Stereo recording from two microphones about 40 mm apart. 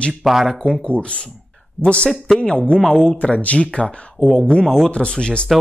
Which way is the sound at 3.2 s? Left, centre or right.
Left.